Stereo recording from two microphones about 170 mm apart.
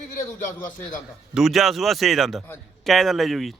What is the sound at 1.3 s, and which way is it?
Speech, centre (ahead or behind).